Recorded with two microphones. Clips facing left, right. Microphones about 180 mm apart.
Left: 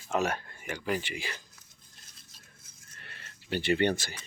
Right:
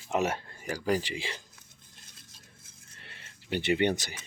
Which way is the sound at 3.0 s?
25° right (ahead or behind).